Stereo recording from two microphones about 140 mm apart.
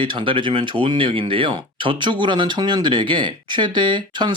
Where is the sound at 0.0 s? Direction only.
40° right (ahead or behind).